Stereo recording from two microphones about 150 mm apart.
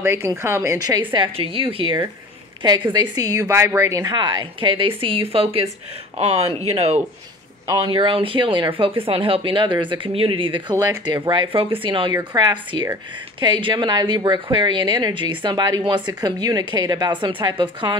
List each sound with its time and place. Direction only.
0.0 s a woman's voice: 15° right (ahead or behind)